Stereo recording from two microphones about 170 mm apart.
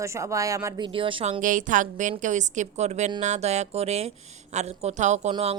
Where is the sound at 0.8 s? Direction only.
30° right (ahead or behind).